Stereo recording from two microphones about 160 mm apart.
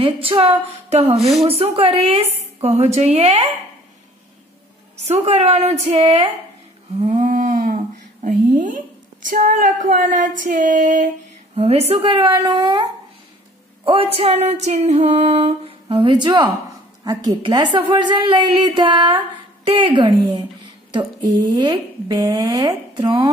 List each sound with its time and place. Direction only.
0.0 s female singing: 35° right (ahead or behind)
5.0 s female singing: 45° right (ahead or behind)
7.0 s humming: 45° right (ahead or behind)
9.3 s female singing: 60° right (ahead or behind)
11.5 s female singing: 40° right (ahead or behind)
13.8 s female singing: 35° right (ahead or behind)
17.0 s a woman's voice: 25° right (ahead or behind)